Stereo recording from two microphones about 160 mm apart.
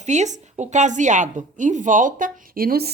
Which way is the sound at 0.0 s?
45° right (ahead or behind).